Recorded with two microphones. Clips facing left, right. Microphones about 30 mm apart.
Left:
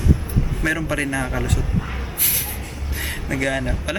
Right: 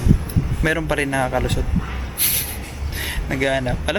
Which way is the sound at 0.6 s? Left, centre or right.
Right.